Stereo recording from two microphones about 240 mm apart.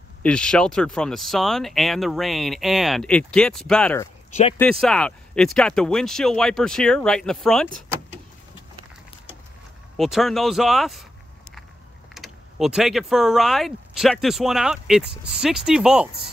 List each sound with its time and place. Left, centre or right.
0.2 s speech: centre
4.3 s speech: left
4.6 s speech: centre
9.9 s speech: centre
12.1 s speech: centre